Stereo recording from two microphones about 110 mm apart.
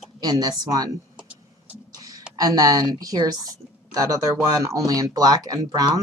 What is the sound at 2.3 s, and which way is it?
Speech, 35° right (ahead or behind).